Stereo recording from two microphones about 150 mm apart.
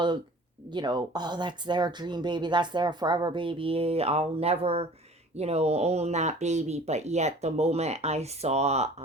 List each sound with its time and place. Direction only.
0.7 s speech: 30° right (ahead or behind); by 8.9 s 45° right (ahead or behind)